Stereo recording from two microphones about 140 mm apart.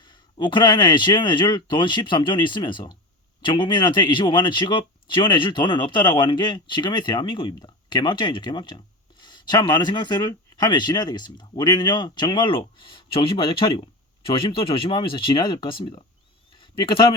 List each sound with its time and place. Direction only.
0.0 s speech: 35° left (ahead or behind)